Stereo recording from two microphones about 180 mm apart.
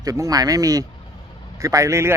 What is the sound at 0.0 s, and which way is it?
Speech, 20° right (ahead or behind).